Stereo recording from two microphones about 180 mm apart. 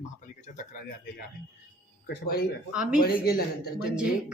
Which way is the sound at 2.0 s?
60° left (ahead or behind).